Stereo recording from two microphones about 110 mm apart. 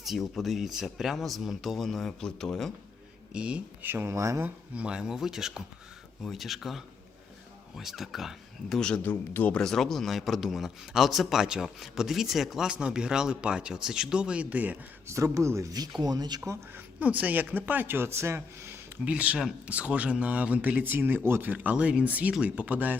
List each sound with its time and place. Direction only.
0.0 s speech: centre (ahead or behind)
3.3 s speech: 10° right (ahead or behind); by 4.4 s 25° right (ahead or behind)
4.4 s speech: 10° right (ahead or behind); by 9.0 s 5° left (ahead or behind)
9.0 s speech: 15° left (ahead or behind); by 14.8 s 15° right (ahead or behind)
15.1 s speech: 25° right (ahead or behind)
16.5 s speech: 25° right (ahead or behind)
17.0 s speech: 15° right (ahead or behind)
19.0 s speech: 10° right (ahead or behind)